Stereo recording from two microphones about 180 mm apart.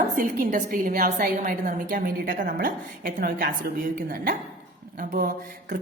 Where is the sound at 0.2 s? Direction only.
50° right (ahead or behind).